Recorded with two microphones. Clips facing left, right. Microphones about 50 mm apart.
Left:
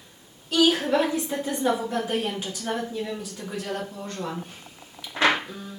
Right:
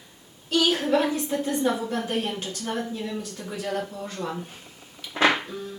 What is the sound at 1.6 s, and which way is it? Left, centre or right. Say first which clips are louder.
A woman's voice: left 1 dB; centre.